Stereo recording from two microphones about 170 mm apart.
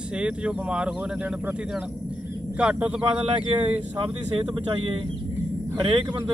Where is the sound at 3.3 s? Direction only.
30° right (ahead or behind).